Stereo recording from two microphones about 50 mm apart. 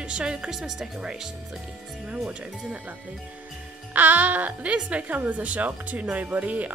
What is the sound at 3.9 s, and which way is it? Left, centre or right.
Speech, right.